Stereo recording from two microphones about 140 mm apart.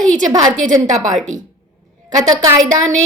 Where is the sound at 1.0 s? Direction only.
65° right (ahead or behind).